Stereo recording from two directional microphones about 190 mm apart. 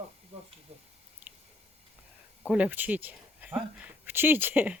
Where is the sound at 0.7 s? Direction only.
30° right (ahead or behind).